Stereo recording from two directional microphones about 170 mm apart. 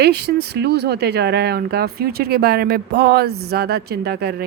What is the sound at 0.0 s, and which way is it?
Speech, 70° right (ahead or behind).